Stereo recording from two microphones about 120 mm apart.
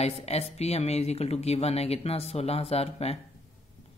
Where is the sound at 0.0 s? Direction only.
60° left (ahead or behind).